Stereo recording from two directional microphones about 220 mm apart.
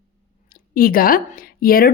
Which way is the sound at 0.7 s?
40° left (ahead or behind).